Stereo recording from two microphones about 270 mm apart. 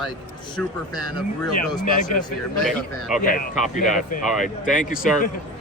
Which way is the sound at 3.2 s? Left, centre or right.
Left.